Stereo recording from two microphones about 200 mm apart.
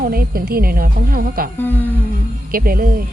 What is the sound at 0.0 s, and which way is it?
A woman's voice, 50° right (ahead or behind).